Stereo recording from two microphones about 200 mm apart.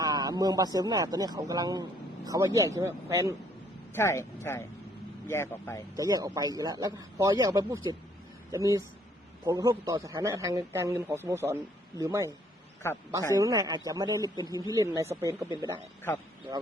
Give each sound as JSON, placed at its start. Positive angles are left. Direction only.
{"t": 0.0, "sound": "speech", "side_deg": -20}
{"t": 3.9, "sound": "speech", "side_deg": 15}
{"t": 6.0, "sound": "speech", "side_deg": -15}
{"t": 12.8, "sound": "speech", "side_deg": 15}
{"t": 13.3, "sound": "speech", "side_deg": -15}